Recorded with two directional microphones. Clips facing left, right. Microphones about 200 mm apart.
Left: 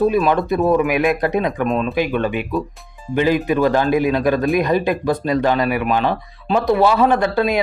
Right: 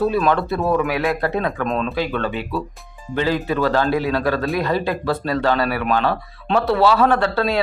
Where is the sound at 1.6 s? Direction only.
Centre (ahead or behind).